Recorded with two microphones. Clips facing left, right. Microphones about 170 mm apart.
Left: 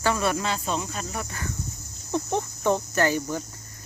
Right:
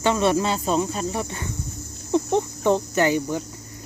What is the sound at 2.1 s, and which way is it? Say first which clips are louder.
Cricket: right 6 dB; 15° right (ahead or behind).